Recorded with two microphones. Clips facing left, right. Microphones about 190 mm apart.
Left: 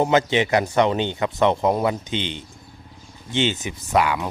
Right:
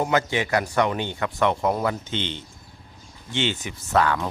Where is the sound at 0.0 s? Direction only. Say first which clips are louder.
Left 4 dB; 20° left (ahead or behind).